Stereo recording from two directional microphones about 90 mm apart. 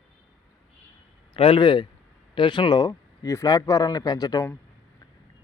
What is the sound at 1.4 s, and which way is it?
Speech, 75° left (ahead or behind).